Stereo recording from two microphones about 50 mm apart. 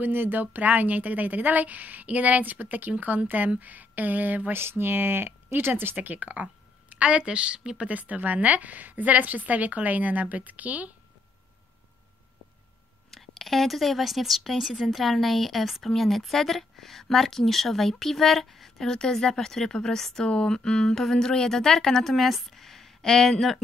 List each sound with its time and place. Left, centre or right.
0.0 s speech: right
4.6 s speech: right
13.1 s a woman's voice: centre